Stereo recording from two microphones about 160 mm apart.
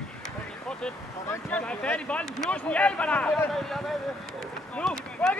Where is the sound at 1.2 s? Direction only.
10° left (ahead or behind).